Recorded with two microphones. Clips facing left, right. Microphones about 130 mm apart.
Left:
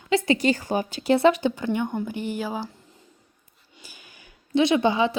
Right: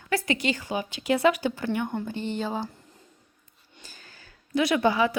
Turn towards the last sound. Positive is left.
turn(degrees=20)  # may be behind; listen again after turning